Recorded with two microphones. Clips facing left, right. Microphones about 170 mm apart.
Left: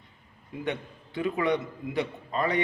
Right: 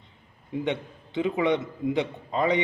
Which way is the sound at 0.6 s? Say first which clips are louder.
Right 2 dB; 20° right (ahead or behind).